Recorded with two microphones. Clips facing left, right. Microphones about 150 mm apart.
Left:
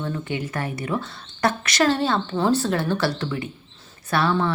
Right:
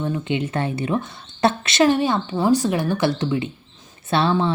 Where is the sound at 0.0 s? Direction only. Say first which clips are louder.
Right 4 dB; 20° right (ahead or behind).